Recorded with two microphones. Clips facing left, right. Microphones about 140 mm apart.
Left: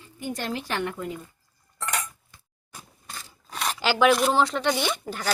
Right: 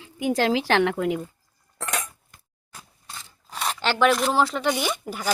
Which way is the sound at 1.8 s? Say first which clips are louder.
Right 1 dB; 90° right.